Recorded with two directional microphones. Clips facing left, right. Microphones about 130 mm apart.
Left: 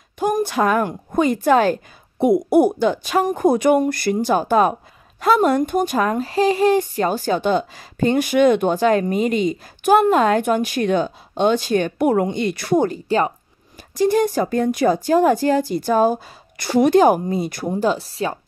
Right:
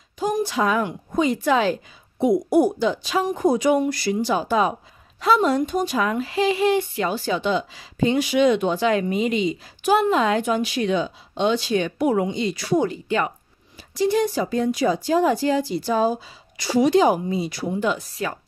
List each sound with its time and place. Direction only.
0.2 s speech: 55° left (ahead or behind); by 18.4 s 30° left (ahead or behind)